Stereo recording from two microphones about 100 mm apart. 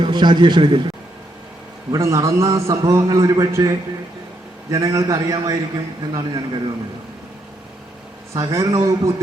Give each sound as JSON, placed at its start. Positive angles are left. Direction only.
{"t": 0.0, "sound": "a man's voice", "side_deg": -50}
{"t": 1.9, "sound": "a man's voice", "side_deg": -30}
{"t": 8.3, "sound": "a man's voice", "side_deg": -35}